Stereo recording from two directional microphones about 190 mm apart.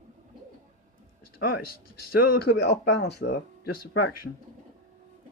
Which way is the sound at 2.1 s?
50° left (ahead or behind).